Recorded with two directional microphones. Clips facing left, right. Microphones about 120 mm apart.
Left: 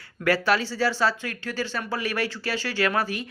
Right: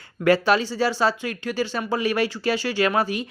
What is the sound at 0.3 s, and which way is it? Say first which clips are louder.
Speech: right 4 dB; 20° right (ahead or behind).